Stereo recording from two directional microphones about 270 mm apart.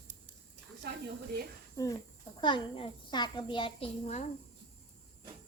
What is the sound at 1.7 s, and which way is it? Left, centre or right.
Speech, centre.